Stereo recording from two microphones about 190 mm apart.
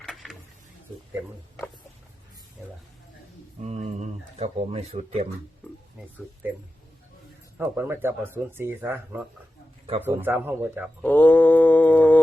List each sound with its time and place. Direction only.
0.0 s a sound: centre (ahead or behind)
3.6 s speech: 35° right (ahead or behind)
7.6 s speech: 10° right (ahead or behind)
11.0 s mantra: 10° left (ahead or behind)